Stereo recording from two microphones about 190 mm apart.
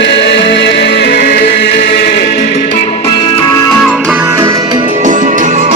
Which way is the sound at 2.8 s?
30° left (ahead or behind).